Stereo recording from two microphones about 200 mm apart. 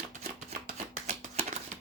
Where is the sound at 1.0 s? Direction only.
35° right (ahead or behind).